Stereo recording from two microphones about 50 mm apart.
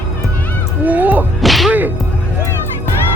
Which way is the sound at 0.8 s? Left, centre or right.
Right.